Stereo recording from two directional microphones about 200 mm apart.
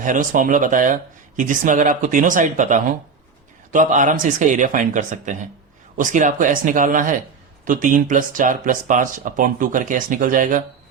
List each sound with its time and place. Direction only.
0.0 s speech: 40° right (ahead or behind)